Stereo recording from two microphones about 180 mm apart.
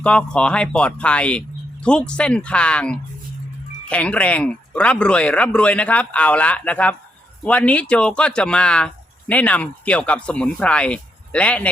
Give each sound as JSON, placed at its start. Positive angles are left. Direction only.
{"t": 0.0, "sound": "speech", "side_deg": 5}